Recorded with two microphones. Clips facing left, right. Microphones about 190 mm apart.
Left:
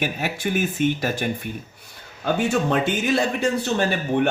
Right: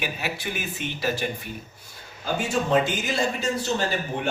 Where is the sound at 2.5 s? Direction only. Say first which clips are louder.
Left 1 dB; 60° left (ahead or behind).